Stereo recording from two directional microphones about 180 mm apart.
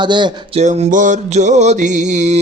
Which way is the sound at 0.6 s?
40° right (ahead or behind).